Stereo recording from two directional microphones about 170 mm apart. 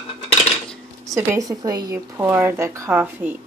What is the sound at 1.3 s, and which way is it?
Speech, 20° right (ahead or behind).